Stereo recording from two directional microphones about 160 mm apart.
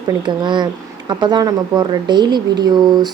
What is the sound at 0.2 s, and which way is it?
Speech, 30° right (ahead or behind).